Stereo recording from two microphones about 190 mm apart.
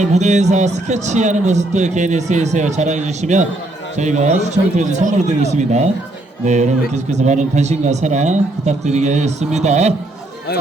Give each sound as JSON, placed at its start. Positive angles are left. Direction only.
{"t": 0.0, "sound": "speech", "side_deg": -35}